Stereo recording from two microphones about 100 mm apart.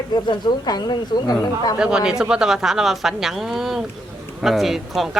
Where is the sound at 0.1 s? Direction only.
45° left (ahead or behind).